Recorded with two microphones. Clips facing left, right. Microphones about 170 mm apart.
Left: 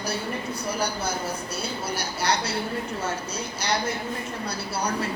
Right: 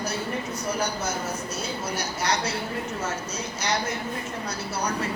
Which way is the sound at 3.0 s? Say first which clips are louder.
Left 1 dB; 30° left (ahead or behind).